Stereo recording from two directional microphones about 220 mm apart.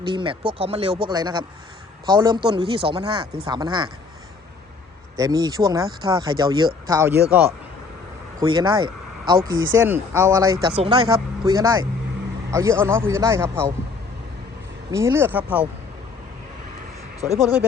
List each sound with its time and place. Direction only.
0.0 s speech: 20° right (ahead or behind)
5.1 s speech: 15° right (ahead or behind)
8.4 s speech: 20° right (ahead or behind)
14.9 s speech: 10° right (ahead or behind)
17.2 s speech: 30° right (ahead or behind)